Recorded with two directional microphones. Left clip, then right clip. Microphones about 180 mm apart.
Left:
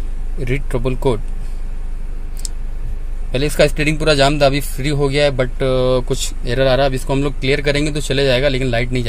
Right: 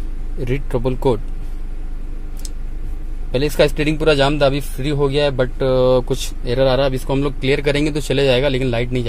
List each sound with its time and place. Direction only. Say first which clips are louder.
0.4 s speech: even; centre (ahead or behind)
3.3 s speech: left 1 dB; centre (ahead or behind)